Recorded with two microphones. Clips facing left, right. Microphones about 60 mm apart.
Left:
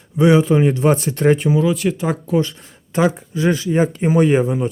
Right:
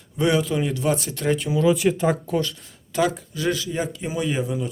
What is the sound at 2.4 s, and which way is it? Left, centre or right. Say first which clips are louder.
Speech: left 6 dB; left.